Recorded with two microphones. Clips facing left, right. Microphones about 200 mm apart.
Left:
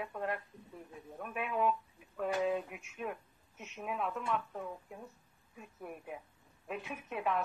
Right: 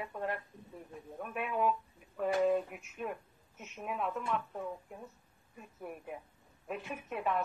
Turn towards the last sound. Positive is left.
turn(degrees=0)  # may be behind; listen again after turning